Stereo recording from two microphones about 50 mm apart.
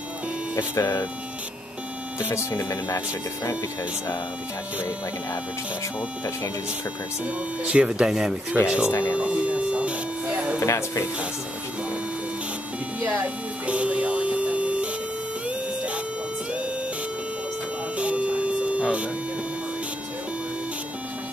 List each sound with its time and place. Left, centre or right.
0.7 s speech: left
2.2 s speech: left
7.2 s speech: right
8.6 s speech: right
9.1 s a sound: right
13.0 s music: right
17.9 s music: right